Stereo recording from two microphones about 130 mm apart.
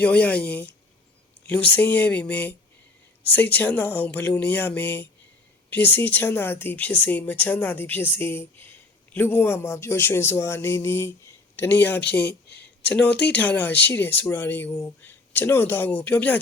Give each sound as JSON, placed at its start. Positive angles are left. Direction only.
{"t": 0.0, "sound": "a man's voice", "side_deg": 10}